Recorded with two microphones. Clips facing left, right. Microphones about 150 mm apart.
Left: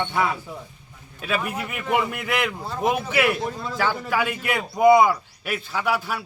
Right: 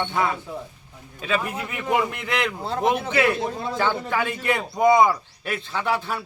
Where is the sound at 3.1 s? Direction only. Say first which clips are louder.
Right 1 dB; 20° right (ahead or behind).